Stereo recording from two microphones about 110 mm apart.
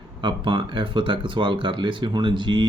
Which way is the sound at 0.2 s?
45° right (ahead or behind).